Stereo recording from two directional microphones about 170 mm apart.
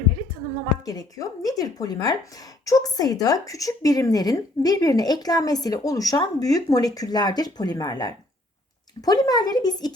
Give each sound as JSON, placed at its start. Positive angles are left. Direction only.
{"t": 0.9, "sound": "a woman's voice", "side_deg": 20}